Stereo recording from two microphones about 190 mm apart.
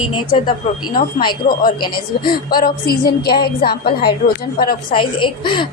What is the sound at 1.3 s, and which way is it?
A woman's voice, 50° left (ahead or behind).